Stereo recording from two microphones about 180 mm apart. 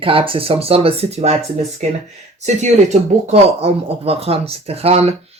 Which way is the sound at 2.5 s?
40° right (ahead or behind).